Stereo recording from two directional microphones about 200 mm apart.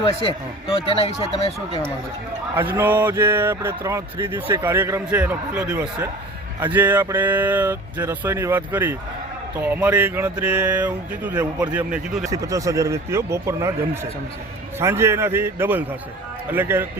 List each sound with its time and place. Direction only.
1.0 s speech: 30° left (ahead or behind)
2.6 s speech: 10° right (ahead or behind)
12.3 s speech: 15° right (ahead or behind)